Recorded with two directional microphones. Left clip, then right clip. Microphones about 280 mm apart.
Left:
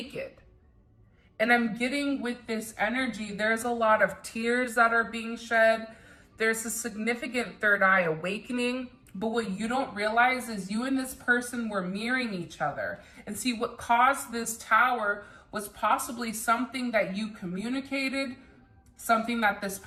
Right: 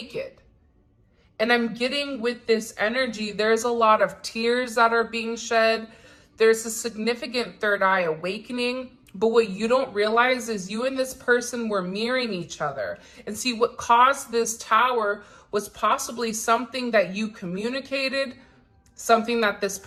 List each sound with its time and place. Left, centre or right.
1.4 s speech: centre
9.2 s speech: right
12.2 s speech: centre
12.5 s speech: centre